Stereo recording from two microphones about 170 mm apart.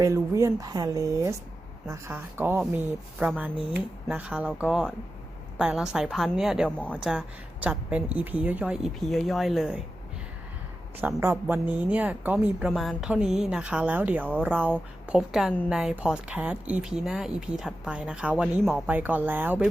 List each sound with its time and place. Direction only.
0.0 s a woman's voice: 15° right (ahead or behind); by 7.0 s 5° left (ahead or behind)
7.0 s a woman's voice: 5° right (ahead or behind)
11.0 s a woman's voice: 15° right (ahead or behind)